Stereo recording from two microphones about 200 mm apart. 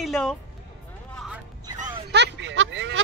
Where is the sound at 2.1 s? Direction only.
60° right (ahead or behind).